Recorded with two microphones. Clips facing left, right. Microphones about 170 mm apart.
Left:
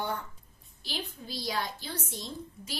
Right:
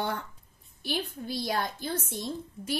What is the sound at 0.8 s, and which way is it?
A woman's voice, 55° right (ahead or behind).